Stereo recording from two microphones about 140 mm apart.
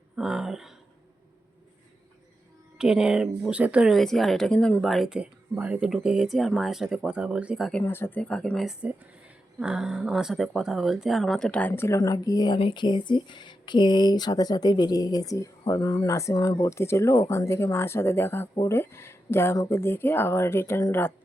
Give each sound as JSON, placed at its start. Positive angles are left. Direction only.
{"t": 0.2, "sound": "speech", "side_deg": -5}
{"t": 2.7, "sound": "speech", "side_deg": -5}
{"t": 7.7, "sound": "speech", "side_deg": 15}